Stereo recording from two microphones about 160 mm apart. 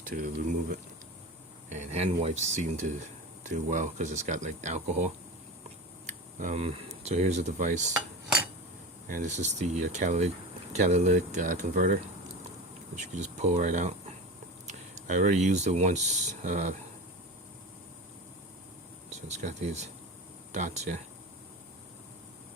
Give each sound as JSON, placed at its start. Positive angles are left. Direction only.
{"t": 0.1, "sound": "speech", "side_deg": -55}
{"t": 1.7, "sound": "speech", "side_deg": -45}
{"t": 9.0, "sound": "speech", "side_deg": -55}
{"t": 13.0, "sound": "speech", "side_deg": -45}
{"t": 19.1, "sound": "speech", "side_deg": -45}